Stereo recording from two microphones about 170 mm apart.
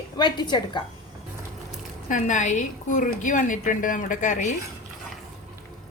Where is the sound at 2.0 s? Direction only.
50° left (ahead or behind).